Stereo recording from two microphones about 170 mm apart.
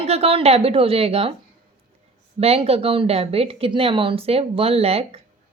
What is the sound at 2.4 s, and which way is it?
A woman's voice, 35° right (ahead or behind).